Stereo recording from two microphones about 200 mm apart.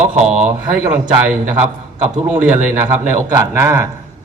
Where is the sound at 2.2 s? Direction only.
10° right (ahead or behind).